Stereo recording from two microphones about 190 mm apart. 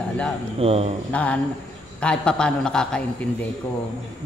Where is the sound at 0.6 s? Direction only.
30° right (ahead or behind).